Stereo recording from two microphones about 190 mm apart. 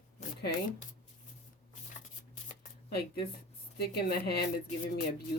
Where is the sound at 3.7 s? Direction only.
55° left (ahead or behind).